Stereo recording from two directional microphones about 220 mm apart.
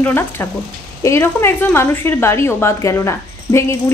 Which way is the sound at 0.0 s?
10° left (ahead or behind).